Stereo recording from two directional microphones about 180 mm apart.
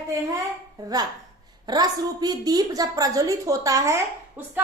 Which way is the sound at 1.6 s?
20° right (ahead or behind).